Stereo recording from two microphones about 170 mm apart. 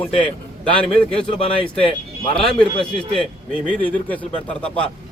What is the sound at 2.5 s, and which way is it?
A man's voice, 5° left (ahead or behind).